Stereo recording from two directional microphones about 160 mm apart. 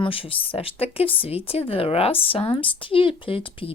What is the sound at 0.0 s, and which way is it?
Speech, 35° left (ahead or behind).